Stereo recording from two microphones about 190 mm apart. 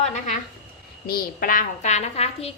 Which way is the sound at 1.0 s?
50° left (ahead or behind).